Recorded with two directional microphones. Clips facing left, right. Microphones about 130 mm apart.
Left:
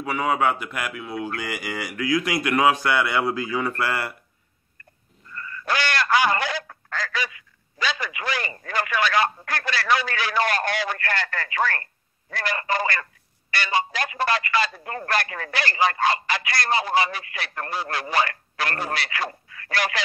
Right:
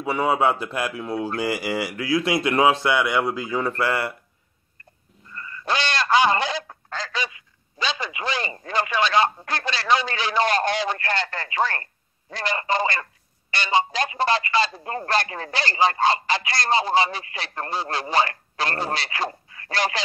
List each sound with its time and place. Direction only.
0.0 s a man's voice: 30° right (ahead or behind)
3.4 s speech: centre (ahead or behind)
3.7 s a man's voice: 20° right (ahead or behind)
5.3 s a sound: 25° right (ahead or behind)
13.5 s a man's voice: 25° right (ahead or behind)